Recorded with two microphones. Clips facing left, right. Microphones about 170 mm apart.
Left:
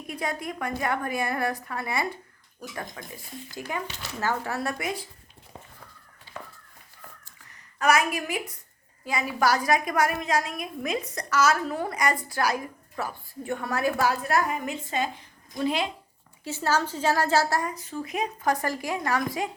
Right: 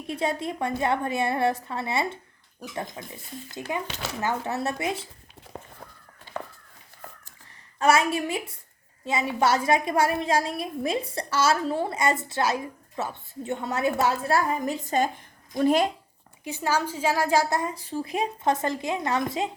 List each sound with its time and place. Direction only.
0.1 s a woman's voice: 25° right (ahead or behind)
3.8 s speech: 80° right
4.2 s a woman's voice: 20° right (ahead or behind)
5.5 s crow: 65° right (ahead or behind)
7.8 s a woman's voice: 30° right (ahead or behind); by 15.9 s 45° right (ahead or behind)
16.4 s a woman's voice: 15° right (ahead or behind)